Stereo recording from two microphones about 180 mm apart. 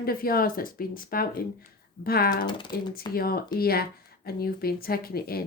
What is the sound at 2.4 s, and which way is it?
Speech, 25° left (ahead or behind).